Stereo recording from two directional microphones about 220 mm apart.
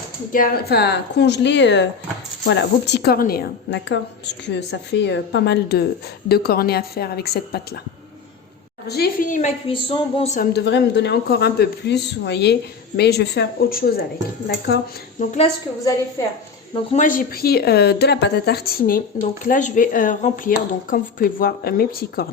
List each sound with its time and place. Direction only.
0.3 s a woman's voice: 40° left (ahead or behind)
8.9 s a woman's voice: 45° left (ahead or behind)
10.5 s a woman's voice: 55° left (ahead or behind)
15.8 s a woman's voice: 15° left (ahead or behind)
16.7 s a woman's voice: 30° left (ahead or behind)